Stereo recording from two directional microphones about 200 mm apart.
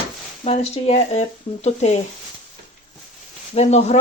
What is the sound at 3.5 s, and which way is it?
Speech, 35° left (ahead or behind).